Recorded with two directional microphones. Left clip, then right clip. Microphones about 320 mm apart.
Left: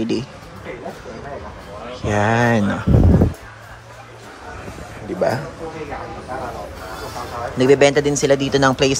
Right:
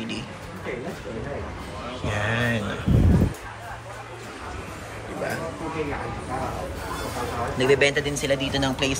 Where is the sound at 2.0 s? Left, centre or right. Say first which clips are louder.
Left 9 dB; left.